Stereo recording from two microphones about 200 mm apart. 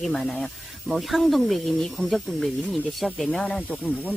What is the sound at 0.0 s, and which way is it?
Speech, centre (ahead or behind).